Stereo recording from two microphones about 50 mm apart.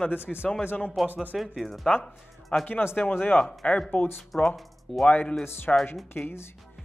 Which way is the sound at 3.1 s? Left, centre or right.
Left.